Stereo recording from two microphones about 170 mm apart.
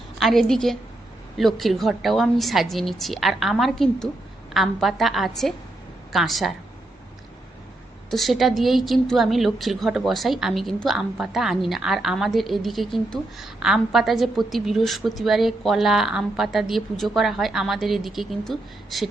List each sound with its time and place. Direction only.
0.2 s a woman's voice: centre (ahead or behind)
8.1 s a woman's voice: centre (ahead or behind)